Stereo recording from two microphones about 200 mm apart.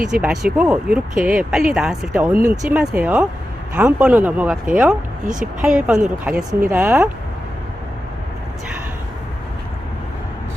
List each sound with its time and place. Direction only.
0.0 s speech: 5° right (ahead or behind)
5.3 s speech: 40° right (ahead or behind)
5.6 s speech: 5° right (ahead or behind)